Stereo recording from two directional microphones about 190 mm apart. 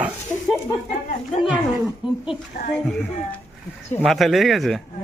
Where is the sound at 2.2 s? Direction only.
30° left (ahead or behind).